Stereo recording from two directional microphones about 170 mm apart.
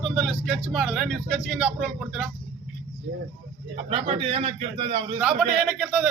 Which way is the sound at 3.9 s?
35° right (ahead or behind).